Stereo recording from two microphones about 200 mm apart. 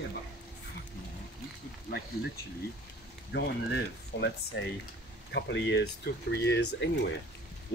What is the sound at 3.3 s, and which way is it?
Speech, 60° left (ahead or behind).